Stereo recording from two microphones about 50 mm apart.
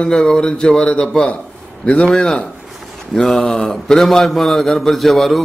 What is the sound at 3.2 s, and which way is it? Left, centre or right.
A man's voice, centre.